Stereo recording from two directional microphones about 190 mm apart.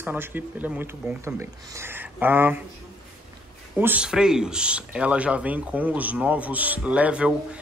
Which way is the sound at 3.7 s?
10° right (ahead or behind).